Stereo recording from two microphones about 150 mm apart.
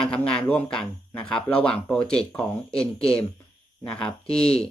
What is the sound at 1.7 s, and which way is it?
Speech, 5° left (ahead or behind).